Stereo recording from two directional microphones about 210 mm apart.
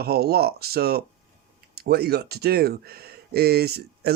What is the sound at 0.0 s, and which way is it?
Speech, 50° right (ahead or behind).